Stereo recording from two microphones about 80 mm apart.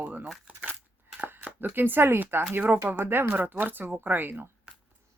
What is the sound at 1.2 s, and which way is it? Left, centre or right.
Speech, right.